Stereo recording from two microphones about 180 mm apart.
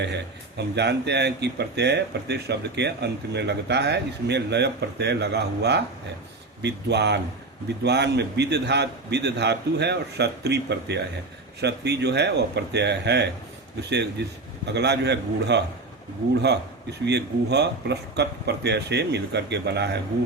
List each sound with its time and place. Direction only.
0.0 s speech: 70° right (ahead or behind)